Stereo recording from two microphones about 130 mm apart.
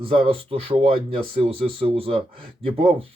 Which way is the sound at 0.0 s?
45° right (ahead or behind).